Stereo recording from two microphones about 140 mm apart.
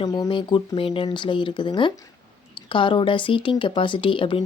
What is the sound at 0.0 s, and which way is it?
A woman's voice, 30° left (ahead or behind).